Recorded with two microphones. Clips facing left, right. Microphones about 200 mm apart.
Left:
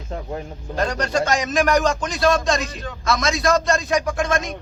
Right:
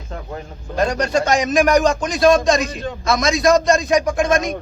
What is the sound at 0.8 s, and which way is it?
A man's voice, 15° right (ahead or behind).